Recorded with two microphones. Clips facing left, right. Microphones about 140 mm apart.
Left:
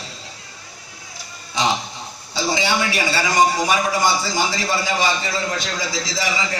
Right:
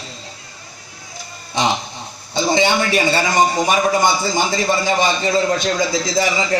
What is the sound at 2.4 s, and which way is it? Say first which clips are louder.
A man's voice: right 5 dB; 20° right (ahead or behind).